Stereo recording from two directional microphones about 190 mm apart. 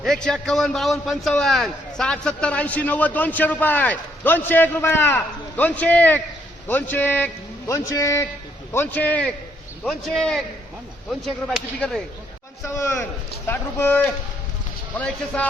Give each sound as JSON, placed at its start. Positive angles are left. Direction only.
{"t": 0.0, "sound": "a man's voice", "side_deg": 5}
{"t": 12.6, "sound": "a man's voice", "side_deg": 15}